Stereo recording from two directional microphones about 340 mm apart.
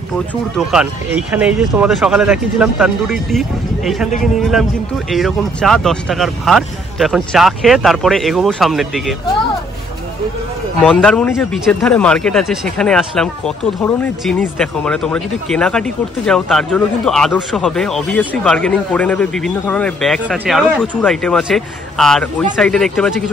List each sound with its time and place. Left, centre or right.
0.6 s speech: centre
10.8 s speech: centre